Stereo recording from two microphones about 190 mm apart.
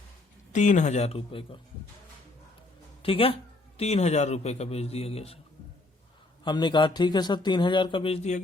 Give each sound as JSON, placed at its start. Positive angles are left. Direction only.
{"t": 0.5, "sound": "a man's voice", "side_deg": 40}
{"t": 3.0, "sound": "a man's voice", "side_deg": 30}
{"t": 6.4, "sound": "a man's voice", "side_deg": 25}